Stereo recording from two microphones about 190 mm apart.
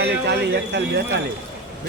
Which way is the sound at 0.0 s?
60° right (ahead or behind).